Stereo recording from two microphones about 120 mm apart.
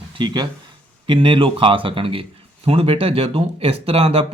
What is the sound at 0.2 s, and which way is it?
A man's voice, 40° right (ahead or behind).